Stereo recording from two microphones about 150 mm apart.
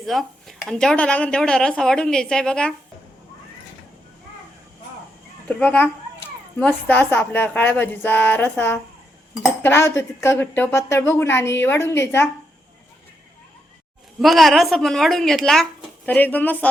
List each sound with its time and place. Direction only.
0.0 s a woman's voice: centre (ahead or behind)
5.5 s a woman's voice: 10° left (ahead or behind)
14.2 s a woman's voice: centre (ahead or behind)